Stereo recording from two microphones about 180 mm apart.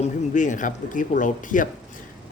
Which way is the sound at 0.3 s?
45° left (ahead or behind).